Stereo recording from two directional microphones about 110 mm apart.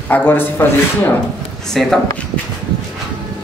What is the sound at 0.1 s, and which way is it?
Speech, 20° left (ahead or behind).